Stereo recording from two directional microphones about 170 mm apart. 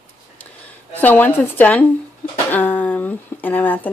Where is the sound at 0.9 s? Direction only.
10° left (ahead or behind).